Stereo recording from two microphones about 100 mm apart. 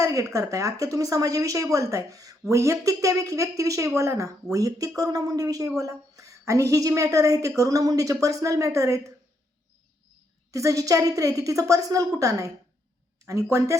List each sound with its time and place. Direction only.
0.0 s a woman's voice: 35° right (ahead or behind)
10.5 s a woman's voice: 35° right (ahead or behind)